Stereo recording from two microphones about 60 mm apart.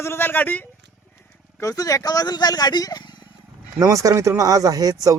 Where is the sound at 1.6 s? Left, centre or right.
Left.